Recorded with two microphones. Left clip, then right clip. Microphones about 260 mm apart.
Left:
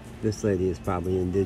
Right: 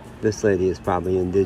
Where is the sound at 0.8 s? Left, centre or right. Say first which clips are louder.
Right 7 dB; right.